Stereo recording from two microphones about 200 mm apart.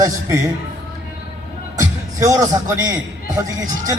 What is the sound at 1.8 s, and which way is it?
A man's voice, 15° right (ahead or behind).